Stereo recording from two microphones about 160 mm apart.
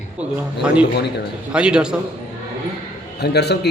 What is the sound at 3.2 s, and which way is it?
Speech, 90° left.